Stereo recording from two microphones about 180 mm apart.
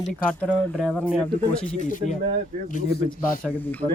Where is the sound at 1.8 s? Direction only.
40° left (ahead or behind).